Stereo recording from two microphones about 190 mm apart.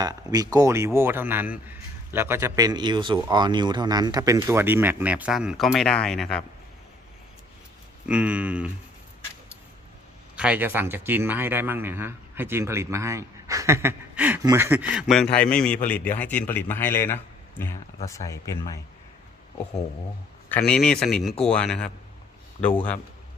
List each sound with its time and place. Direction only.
0.0 s speech: 20° right (ahead or behind); by 6.4 s 5° left (ahead or behind)
8.0 s speech: 5° right (ahead or behind)
10.3 s a man's voice: 5° right (ahead or behind); by 18.8 s 15° left (ahead or behind)
20.5 s a man's voice: 5° left (ahead or behind)